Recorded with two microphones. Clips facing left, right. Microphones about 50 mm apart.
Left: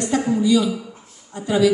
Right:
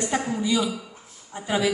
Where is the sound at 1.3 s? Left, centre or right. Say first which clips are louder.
Left 6 dB; right.